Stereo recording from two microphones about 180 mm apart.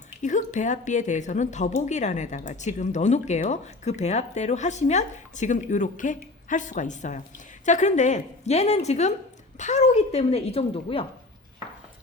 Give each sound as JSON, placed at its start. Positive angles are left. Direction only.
{"t": 0.2, "sound": "a woman's voice", "side_deg": 45}